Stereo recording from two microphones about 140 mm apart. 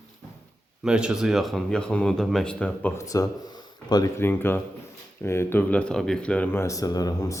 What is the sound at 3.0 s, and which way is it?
Speech, 25° left (ahead or behind).